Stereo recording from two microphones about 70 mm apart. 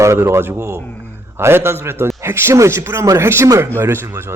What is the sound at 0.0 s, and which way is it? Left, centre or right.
Speech, right.